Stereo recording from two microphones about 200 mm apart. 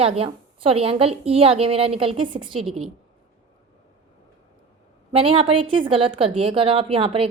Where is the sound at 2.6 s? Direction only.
Centre (ahead or behind).